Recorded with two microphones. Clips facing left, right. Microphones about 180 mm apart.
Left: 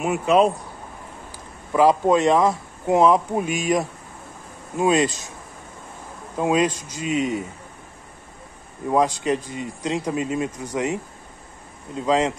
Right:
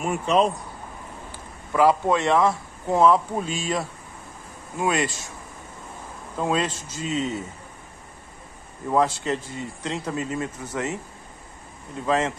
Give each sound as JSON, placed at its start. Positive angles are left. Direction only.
{"t": 0.0, "sound": "a man's voice", "side_deg": 5}
{"t": 1.7, "sound": "a man's voice", "side_deg": 15}
{"t": 6.3, "sound": "a man's voice", "side_deg": 15}
{"t": 8.8, "sound": "a man's voice", "side_deg": 15}
{"t": 12.1, "sound": "a man's voice", "side_deg": 15}